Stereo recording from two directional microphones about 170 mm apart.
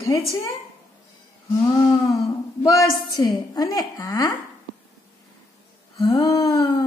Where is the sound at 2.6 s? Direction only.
20° left (ahead or behind).